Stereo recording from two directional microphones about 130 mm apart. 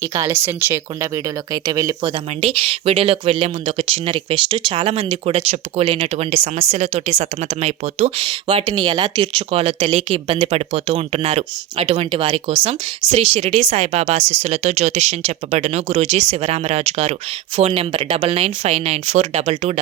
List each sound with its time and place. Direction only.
0.2 s speech: 20° right (ahead or behind)
2.0 s speech: 45° right (ahead or behind)
8.2 s speech: 45° right (ahead or behind)
9.6 s speech: 55° right (ahead or behind)
17.7 s speech: 45° right (ahead or behind)